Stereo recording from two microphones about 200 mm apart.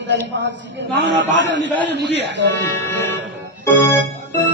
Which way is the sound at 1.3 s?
65° right (ahead or behind).